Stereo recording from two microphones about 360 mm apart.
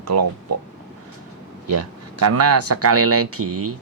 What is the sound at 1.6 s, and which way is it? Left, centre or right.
Speech, right.